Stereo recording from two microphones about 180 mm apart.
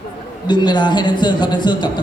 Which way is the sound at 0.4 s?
25° left (ahead or behind).